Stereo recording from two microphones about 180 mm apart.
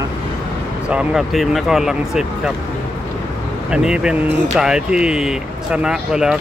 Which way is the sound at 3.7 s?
5° right (ahead or behind).